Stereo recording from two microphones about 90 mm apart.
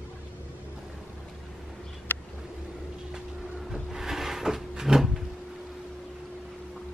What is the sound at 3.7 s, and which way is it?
Drawer open or close, 5° right (ahead or behind).